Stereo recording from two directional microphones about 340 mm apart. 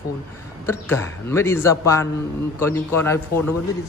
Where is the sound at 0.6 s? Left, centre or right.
Centre.